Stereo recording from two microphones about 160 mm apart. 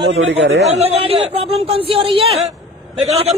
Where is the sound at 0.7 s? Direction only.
40° right (ahead or behind).